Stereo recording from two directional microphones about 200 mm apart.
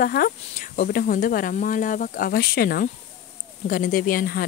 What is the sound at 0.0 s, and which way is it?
Speech, 45° left (ahead or behind).